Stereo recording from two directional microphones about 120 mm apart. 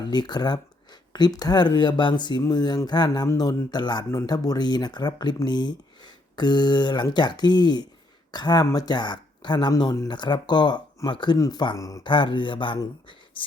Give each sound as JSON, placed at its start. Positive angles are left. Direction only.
{"t": 0.0, "sound": "speech", "side_deg": 40}
{"t": 12.0, "sound": "speech", "side_deg": 40}